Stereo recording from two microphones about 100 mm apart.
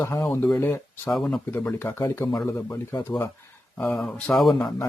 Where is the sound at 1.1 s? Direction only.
5° left (ahead or behind).